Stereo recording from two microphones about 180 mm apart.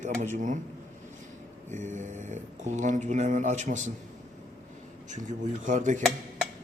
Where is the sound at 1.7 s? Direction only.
40° right (ahead or behind).